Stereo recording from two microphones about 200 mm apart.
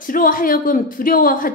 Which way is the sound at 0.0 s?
45° left (ahead or behind).